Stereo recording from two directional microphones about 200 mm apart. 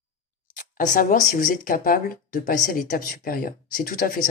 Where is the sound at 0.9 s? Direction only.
45° left (ahead or behind).